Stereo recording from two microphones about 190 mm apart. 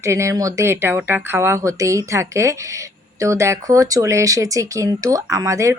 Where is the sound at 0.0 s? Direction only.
15° right (ahead or behind).